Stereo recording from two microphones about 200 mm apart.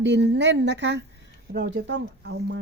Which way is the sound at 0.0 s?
60° right (ahead or behind).